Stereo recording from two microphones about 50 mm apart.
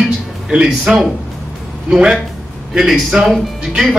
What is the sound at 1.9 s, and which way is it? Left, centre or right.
Speech, centre.